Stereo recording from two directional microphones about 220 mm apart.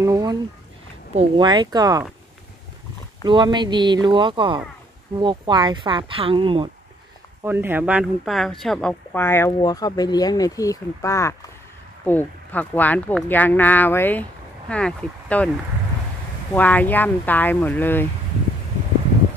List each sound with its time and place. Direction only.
0.0 s speech: 15° right (ahead or behind)
3.3 s speech: 20° right (ahead or behind)
7.4 s speech: 10° right (ahead or behind)
16.5 s speech: 5° left (ahead or behind)